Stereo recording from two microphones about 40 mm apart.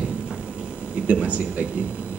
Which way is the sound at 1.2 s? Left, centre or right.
Right.